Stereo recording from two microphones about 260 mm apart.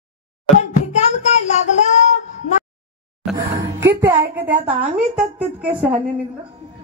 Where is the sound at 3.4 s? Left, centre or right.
Centre.